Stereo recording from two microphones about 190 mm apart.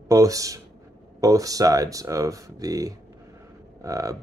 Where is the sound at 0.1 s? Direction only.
15° right (ahead or behind).